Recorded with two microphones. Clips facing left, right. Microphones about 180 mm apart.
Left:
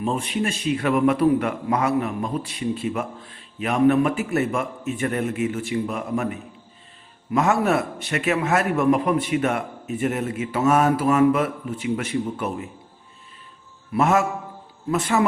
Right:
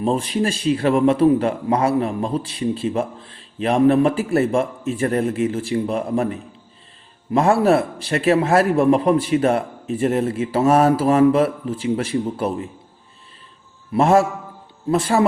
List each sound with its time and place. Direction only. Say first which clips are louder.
0.0 s speech: right 4 dB; 35° right (ahead or behind)
13.9 s speech: right 4 dB; 30° right (ahead or behind)